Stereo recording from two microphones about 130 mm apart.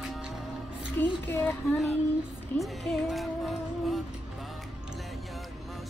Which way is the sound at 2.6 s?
Centre (ahead or behind).